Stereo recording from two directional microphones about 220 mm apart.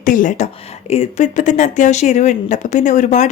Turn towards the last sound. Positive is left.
turn(degrees=35)  # may be behind; listen again after turning